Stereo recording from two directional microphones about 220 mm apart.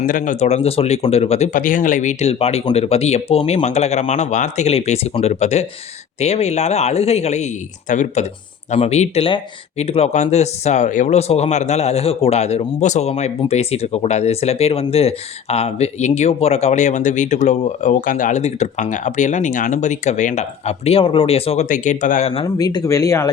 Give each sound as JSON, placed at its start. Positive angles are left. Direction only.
{"t": 0.0, "sound": "speech", "side_deg": 35}
{"t": 22.4, "sound": "speech", "side_deg": 15}